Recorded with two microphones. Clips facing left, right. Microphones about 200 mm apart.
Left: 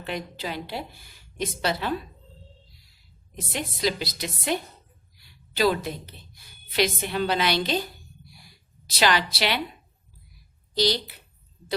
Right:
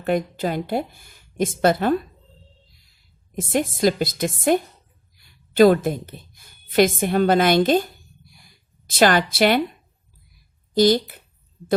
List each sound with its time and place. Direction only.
0.0 s speech: 50° right (ahead or behind)
3.3 s a woman's voice: 50° right (ahead or behind)
8.9 s speech: 50° right (ahead or behind)
10.8 s speech: 50° right (ahead or behind)